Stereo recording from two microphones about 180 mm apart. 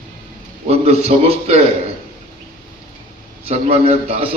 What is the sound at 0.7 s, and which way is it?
Speech, 35° right (ahead or behind).